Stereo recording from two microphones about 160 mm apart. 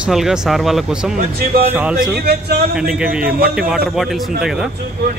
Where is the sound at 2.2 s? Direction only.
80° right.